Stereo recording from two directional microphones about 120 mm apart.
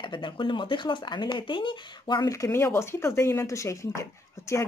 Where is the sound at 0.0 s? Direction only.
40° left (ahead or behind).